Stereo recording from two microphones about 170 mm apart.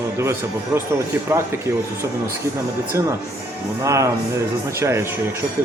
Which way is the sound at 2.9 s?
15° right (ahead or behind).